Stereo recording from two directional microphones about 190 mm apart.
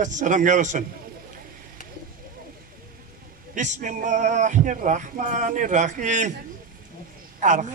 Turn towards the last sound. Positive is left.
turn(degrees=-40)  # may be behind; listen again after turning